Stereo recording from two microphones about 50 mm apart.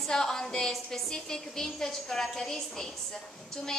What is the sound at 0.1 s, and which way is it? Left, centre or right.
A woman's voice, centre.